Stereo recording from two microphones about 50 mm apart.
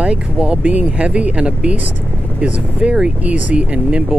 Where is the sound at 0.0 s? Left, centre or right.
Right.